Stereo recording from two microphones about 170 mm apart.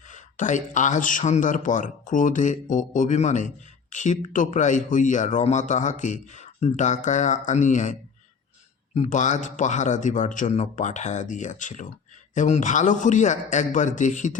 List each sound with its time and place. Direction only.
0.1 s a man's voice: 45° left (ahead or behind)
9.0 s a man's voice: 45° left (ahead or behind)